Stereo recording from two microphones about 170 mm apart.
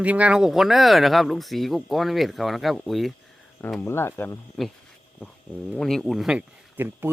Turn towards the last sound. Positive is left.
turn(degrees=-10)  # may be behind; listen again after turning